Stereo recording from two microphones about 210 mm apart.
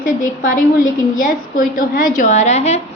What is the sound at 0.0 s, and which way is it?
Speech, 40° left (ahead or behind).